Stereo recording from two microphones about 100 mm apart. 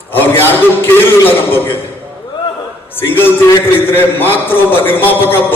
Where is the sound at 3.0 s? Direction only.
20° left (ahead or behind).